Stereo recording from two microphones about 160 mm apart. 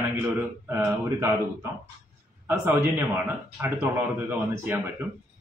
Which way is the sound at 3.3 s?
15° right (ahead or behind).